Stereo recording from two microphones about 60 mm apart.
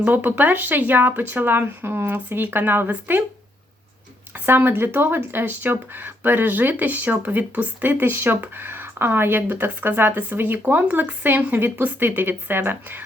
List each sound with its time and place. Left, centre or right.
0.0 s speech: right
4.4 s speech: right